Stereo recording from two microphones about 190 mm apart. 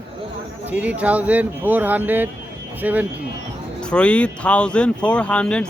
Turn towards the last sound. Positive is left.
turn(degrees=5)  # may be behind; listen again after turning